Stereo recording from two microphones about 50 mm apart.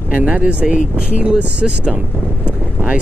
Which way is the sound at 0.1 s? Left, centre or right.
Right.